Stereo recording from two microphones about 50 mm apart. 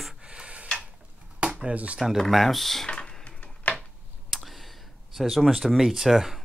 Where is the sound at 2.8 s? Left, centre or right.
Centre.